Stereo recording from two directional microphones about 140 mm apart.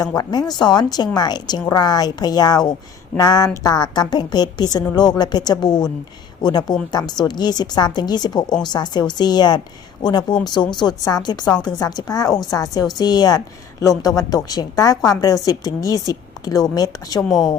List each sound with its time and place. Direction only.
0.2 s a woman's voice: 30° left (ahead or behind)
17.2 s speech: centre (ahead or behind)